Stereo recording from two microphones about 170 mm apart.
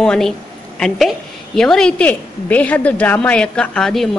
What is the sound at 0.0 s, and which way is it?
A woman's voice, 5° left (ahead or behind).